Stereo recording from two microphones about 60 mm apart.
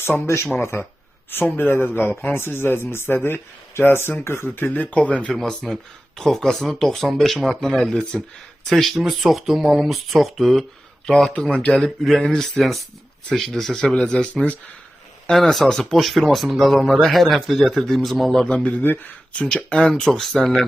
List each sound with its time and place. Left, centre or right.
0.0 s a man's voice: left
2.3 s speech: left
4.6 s speech: left
5.3 s speech: centre
18.4 s speech: centre